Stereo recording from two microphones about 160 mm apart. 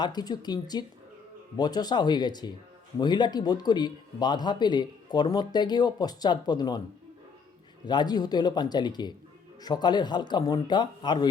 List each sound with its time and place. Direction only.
0.0 s a man's voice: 25° left (ahead or behind)
7.9 s a man's voice: 25° left (ahead or behind)